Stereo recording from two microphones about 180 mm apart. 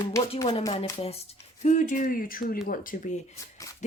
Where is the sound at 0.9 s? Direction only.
35° left (ahead or behind).